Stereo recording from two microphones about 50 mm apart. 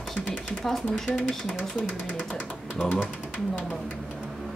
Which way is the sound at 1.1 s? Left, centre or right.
Left.